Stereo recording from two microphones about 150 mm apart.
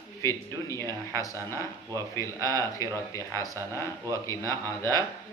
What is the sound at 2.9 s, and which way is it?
Speech, 20° left (ahead or behind).